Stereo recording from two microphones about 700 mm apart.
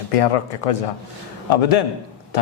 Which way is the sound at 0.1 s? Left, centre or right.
Left.